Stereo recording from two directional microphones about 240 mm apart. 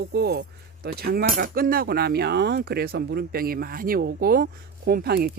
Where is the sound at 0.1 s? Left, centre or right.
Right.